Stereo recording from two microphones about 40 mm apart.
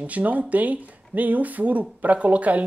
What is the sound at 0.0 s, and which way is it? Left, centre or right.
Speech, right.